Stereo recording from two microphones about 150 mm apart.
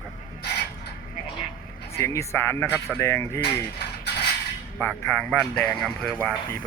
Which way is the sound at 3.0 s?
20° left (ahead or behind).